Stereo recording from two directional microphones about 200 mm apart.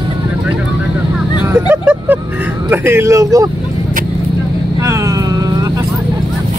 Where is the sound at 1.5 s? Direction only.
10° right (ahead or behind).